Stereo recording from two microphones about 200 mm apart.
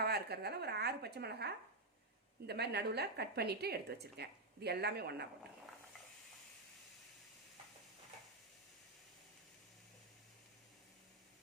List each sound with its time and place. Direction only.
0.0 s a woman's voice: 50° right (ahead or behind)